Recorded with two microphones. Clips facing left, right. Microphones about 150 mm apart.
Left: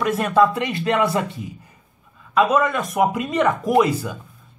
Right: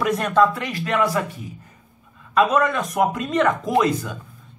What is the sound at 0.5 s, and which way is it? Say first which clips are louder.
Speech: left 3 dB; 25° left (ahead or behind).